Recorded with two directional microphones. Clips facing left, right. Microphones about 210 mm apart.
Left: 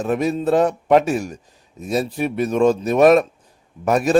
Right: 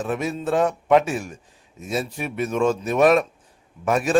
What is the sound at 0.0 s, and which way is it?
A man's voice, 40° left (ahead or behind).